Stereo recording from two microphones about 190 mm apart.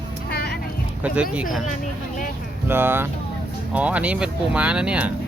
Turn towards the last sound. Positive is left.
turn(degrees=-5)  # may be behind; listen again after turning